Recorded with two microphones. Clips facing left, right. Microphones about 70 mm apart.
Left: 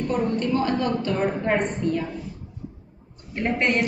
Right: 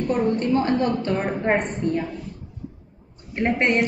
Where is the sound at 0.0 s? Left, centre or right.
Centre.